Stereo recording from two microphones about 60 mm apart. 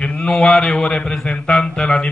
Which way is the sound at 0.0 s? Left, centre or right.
Centre.